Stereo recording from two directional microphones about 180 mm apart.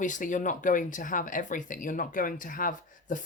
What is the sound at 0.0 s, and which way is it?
Speech, 45° left (ahead or behind).